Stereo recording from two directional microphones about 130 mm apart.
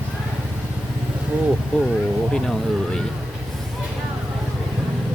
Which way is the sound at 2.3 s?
5° left (ahead or behind).